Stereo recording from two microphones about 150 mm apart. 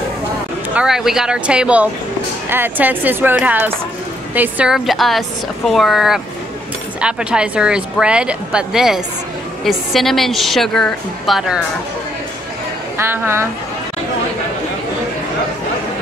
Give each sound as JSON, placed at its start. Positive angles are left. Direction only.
{"t": 0.7, "sound": "speech", "side_deg": -5}
{"t": 12.9, "sound": "speech", "side_deg": -15}